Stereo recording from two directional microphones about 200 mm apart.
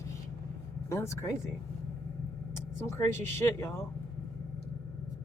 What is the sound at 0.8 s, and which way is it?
Speech, 15° left (ahead or behind).